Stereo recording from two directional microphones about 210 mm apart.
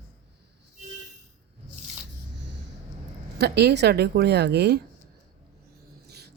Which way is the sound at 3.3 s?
50° right (ahead or behind).